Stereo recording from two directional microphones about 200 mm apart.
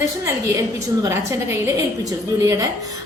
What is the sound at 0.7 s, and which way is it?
A woman's voice, 15° right (ahead or behind).